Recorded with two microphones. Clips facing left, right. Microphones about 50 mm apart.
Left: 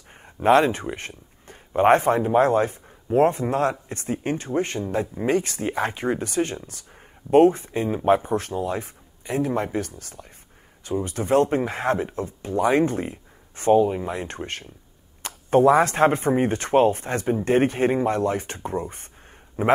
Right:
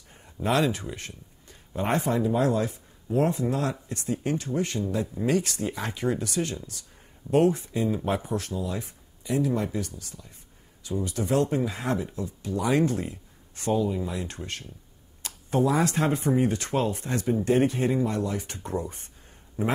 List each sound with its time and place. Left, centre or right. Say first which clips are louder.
0.1 s a man's voice: left 9 dB; left